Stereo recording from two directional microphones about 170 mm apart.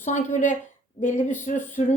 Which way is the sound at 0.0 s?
45° left (ahead or behind).